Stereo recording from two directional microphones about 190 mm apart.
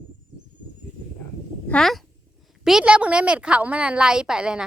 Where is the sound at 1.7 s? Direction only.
Centre (ahead or behind).